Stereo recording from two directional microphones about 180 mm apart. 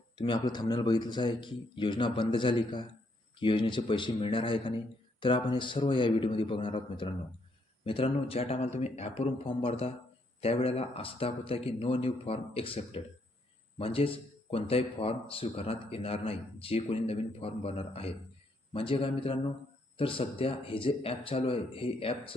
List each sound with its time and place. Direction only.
0.2 s a man's voice: 25° left (ahead or behind)